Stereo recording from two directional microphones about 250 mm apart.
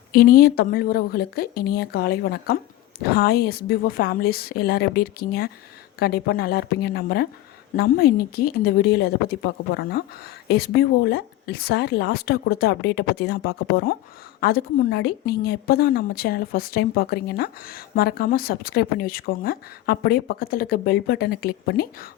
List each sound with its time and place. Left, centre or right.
0.1 s a woman's voice: left
10.5 s a woman's voice: left